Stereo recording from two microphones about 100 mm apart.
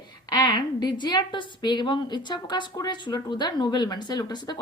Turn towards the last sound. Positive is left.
turn(degrees=45)  # may be behind; listen again after turning